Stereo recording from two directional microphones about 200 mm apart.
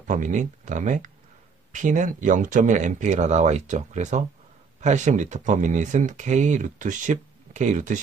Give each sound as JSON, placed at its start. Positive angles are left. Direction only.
{"t": 0.0, "sound": "speech", "side_deg": -40}